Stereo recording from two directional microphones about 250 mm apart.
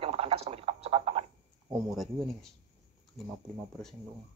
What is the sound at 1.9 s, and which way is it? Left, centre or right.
Speech, centre.